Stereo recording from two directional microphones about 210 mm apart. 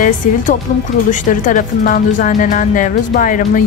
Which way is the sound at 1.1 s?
40° left (ahead or behind).